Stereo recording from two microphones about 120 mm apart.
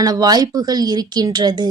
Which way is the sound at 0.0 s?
30° right (ahead or behind).